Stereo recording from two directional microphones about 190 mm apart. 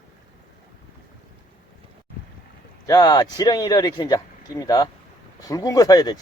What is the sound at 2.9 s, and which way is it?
Speech, 20° left (ahead or behind).